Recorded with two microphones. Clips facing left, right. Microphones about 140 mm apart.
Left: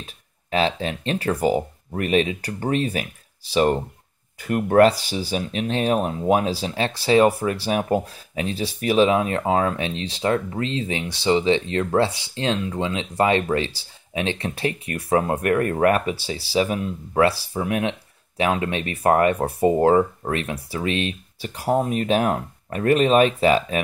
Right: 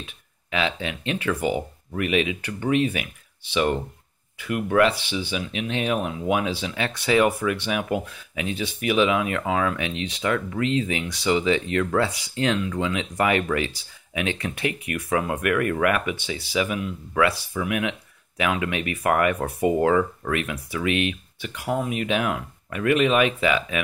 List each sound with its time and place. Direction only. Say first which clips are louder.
0.0 s speech: even; 35° left (ahead or behind)